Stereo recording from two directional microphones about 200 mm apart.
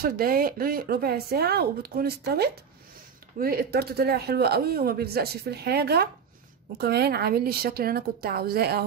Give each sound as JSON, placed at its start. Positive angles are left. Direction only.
{"t": 0.0, "sound": "speech", "side_deg": -50}